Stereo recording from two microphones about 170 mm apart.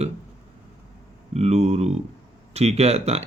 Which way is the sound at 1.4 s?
40° right (ahead or behind).